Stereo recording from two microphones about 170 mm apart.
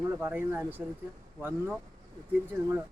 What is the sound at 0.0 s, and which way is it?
Speech, 15° right (ahead or behind).